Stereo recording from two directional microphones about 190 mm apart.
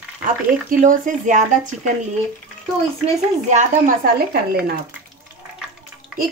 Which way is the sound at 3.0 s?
40° right (ahead or behind).